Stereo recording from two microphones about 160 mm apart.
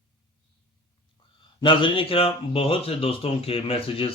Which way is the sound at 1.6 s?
30° left (ahead or behind).